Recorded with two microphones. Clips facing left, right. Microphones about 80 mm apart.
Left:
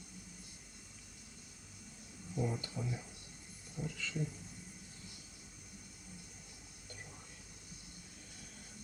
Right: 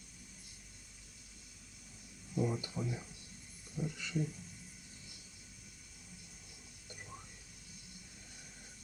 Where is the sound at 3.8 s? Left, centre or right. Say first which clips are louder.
Right 3 dB; right.